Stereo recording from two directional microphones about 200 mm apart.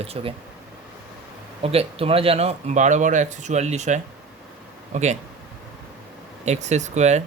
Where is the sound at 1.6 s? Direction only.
30° right (ahead or behind).